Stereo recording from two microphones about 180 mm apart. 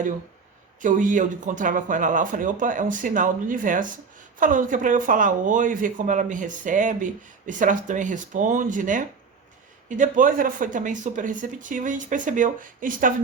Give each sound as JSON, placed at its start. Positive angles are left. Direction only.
{"t": 0.8, "sound": "speech", "side_deg": -45}